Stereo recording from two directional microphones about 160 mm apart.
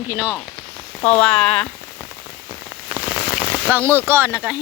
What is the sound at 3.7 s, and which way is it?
Speech, 15° right (ahead or behind).